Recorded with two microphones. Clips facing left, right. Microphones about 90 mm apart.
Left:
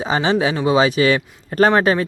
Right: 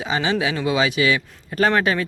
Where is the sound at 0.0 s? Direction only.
35° left (ahead or behind).